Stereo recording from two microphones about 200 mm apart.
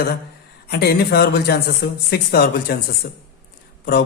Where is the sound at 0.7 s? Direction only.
55° left (ahead or behind).